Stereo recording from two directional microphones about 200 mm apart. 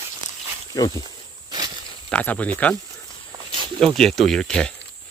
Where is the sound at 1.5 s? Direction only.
20° right (ahead or behind).